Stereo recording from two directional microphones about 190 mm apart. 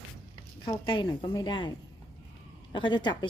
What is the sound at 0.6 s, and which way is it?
A woman's voice, 25° left (ahead or behind).